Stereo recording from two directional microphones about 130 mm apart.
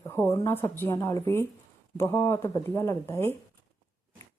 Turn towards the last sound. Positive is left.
turn(degrees=20)  # may be behind; listen again after turning